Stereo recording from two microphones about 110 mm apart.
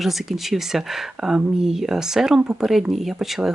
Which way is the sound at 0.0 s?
Centre (ahead or behind).